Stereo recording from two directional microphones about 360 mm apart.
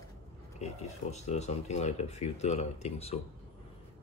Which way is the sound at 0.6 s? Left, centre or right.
Centre.